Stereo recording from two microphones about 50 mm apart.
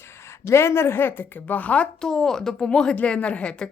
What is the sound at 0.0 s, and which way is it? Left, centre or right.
A woman's voice, left.